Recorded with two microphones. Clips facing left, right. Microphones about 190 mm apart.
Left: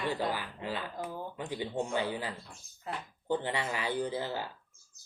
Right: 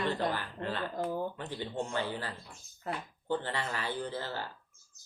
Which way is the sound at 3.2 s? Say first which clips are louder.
Left 2 dB; 15° left (ahead or behind).